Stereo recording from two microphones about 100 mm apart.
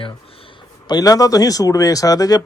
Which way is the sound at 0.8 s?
40° left (ahead or behind).